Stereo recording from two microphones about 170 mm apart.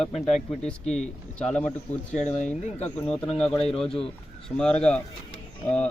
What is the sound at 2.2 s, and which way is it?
Speech, 45° left (ahead or behind).